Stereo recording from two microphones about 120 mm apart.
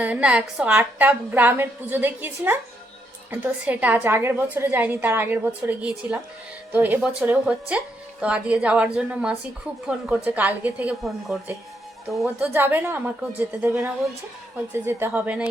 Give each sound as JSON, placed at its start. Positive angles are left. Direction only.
{"t": 0.0, "sound": "a woman's voice", "side_deg": -10}
{"t": 12.0, "sound": "a woman's voice", "side_deg": 0}
{"t": 12.4, "sound": "a woman's voice", "side_deg": -15}